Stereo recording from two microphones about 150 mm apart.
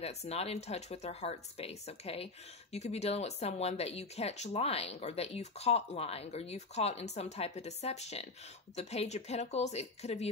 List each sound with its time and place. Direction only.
0.0 s speech: 45° left (ahead or behind)